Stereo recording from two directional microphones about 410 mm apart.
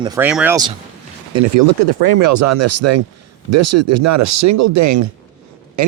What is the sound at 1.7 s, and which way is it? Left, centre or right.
Speech, right.